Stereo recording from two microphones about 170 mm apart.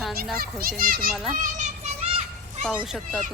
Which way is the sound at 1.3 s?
45° right (ahead or behind).